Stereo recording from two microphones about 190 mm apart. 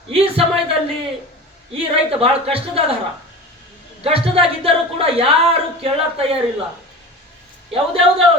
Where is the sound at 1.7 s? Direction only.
30° right (ahead or behind).